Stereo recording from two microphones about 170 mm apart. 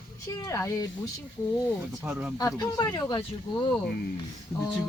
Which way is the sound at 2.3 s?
20° left (ahead or behind).